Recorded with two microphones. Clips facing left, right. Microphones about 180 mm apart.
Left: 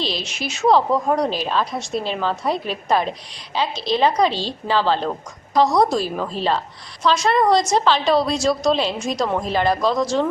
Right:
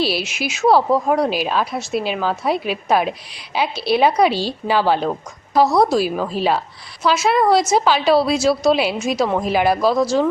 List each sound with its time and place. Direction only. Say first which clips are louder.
0.0 s a woman's voice: right 5 dB; 10° right (ahead or behind)